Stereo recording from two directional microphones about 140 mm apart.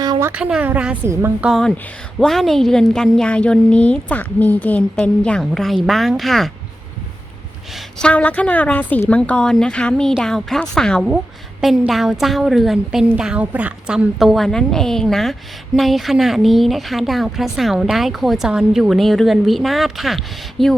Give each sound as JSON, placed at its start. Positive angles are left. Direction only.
{"t": 0.0, "sound": "a sound", "side_deg": -25}
{"t": 0.3, "sound": "a woman's voice", "side_deg": -10}
{"t": 1.5, "sound": "a woman's voice", "side_deg": 5}
{"t": 7.7, "sound": "a woman's voice", "side_deg": 0}